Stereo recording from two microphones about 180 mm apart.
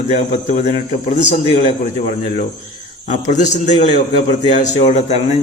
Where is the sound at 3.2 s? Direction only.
40° left (ahead or behind).